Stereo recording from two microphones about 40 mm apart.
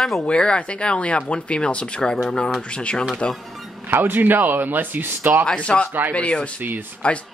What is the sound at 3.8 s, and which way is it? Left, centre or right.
Speech, right.